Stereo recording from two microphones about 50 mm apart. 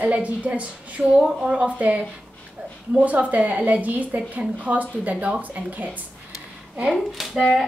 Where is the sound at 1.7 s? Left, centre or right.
Right.